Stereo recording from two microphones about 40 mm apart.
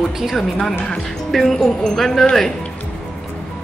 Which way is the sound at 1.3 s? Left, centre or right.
Centre.